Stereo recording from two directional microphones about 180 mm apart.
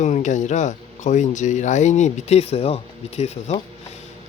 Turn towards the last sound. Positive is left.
turn(degrees=35)  # may be behind; listen again after turning